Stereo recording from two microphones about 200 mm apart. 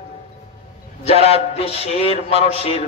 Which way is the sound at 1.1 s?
30° left (ahead or behind).